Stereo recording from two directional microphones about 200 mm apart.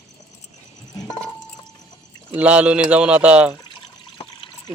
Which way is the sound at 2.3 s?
5° right (ahead or behind).